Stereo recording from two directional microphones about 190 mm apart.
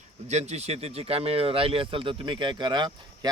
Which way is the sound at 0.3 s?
35° right (ahead or behind).